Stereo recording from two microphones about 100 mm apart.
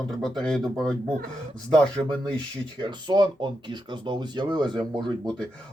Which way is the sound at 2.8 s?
45° right (ahead or behind).